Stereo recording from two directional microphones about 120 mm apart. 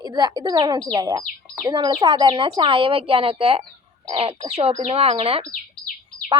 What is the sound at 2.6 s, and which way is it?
A woman's voice, 50° right (ahead or behind).